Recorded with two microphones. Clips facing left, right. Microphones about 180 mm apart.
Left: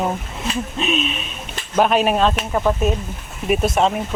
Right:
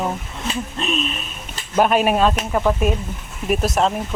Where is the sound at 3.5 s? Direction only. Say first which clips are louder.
Left 1 dB; centre (ahead or behind).